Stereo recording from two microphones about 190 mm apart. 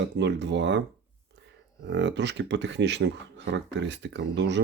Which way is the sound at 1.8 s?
65° right (ahead or behind).